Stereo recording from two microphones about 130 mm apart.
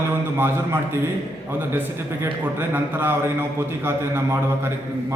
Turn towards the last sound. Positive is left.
turn(degrees=-20)  # may be behind; listen again after turning